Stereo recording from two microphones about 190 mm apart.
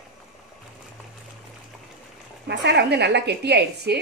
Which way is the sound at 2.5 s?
65° right (ahead or behind).